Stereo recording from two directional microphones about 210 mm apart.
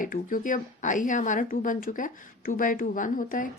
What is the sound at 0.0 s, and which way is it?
Speech, 40° left (ahead or behind).